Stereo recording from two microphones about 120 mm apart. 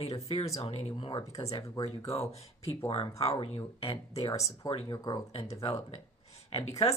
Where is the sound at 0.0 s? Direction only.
60° left (ahead or behind).